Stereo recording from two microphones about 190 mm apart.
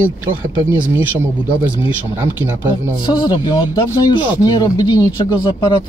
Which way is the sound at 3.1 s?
25° left (ahead or behind).